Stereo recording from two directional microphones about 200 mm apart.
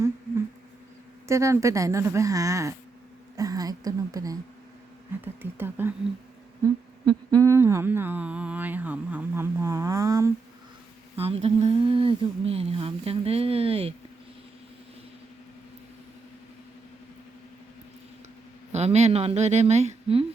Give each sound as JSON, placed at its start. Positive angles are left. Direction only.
{"t": 1.3, "sound": "humming", "side_deg": -15}
{"t": 3.3, "sound": "a woman's voice", "side_deg": -20}
{"t": 5.2, "sound": "humming", "side_deg": -10}
{"t": 7.0, "sound": "humming", "side_deg": -20}
{"t": 11.2, "sound": "speech", "side_deg": -30}
{"t": 18.7, "sound": "a woman's voice", "side_deg": -30}